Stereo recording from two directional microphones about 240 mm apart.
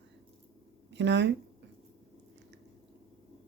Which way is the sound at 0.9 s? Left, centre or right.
Right.